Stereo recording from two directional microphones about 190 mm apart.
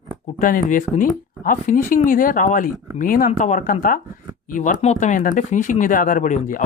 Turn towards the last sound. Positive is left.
turn(degrees=40)  # may be behind; listen again after turning